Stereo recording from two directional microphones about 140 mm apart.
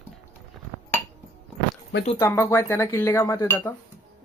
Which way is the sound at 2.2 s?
20° left (ahead or behind).